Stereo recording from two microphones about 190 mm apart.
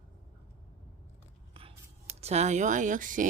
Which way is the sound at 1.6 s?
30° right (ahead or behind).